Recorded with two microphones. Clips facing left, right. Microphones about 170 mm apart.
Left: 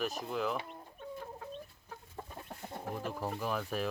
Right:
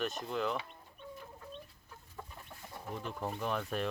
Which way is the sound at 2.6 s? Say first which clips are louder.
Left 4 dB; 60° left (ahead or behind).